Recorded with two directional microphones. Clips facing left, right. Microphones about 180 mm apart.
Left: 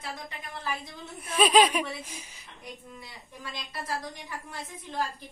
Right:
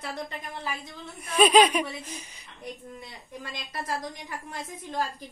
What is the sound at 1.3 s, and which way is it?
Speech, centre (ahead or behind).